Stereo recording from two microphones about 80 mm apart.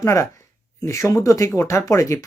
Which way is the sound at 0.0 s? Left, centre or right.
Left.